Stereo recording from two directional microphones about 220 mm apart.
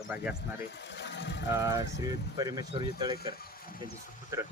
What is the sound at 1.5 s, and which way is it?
Speech, 15° right (ahead or behind).